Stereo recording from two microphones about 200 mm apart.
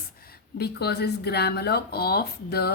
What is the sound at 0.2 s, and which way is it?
Speech, 50° left (ahead or behind).